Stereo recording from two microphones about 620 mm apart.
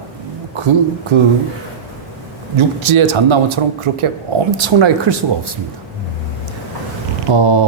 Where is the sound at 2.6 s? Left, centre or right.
Right.